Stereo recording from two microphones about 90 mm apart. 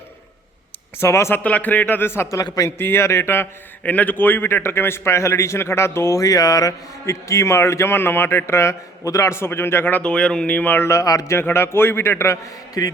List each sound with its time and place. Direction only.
0.9 s speech: 30° left (ahead or behind)
1.5 s a man's voice: 15° left (ahead or behind)
10.0 s speech: 10° left (ahead or behind)
10.9 s speech: 40° left (ahead or behind)
11.3 s a man's voice: 25° left (ahead or behind)